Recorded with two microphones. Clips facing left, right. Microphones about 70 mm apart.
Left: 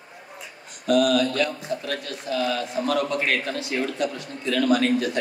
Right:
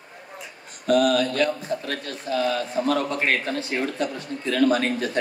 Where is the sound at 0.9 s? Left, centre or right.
Right.